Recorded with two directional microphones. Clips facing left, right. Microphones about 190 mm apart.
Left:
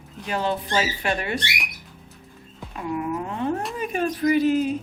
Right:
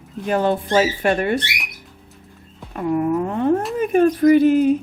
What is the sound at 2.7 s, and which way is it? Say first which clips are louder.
Speech: right 8 dB; 45° right (ahead or behind).